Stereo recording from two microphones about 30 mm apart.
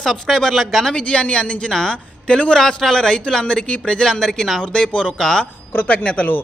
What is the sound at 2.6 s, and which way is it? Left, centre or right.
A man's voice, centre.